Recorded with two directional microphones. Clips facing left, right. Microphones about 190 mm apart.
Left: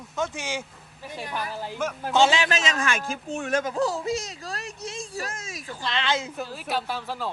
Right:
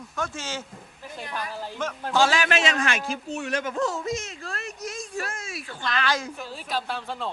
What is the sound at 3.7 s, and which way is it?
Speech, 35° left (ahead or behind).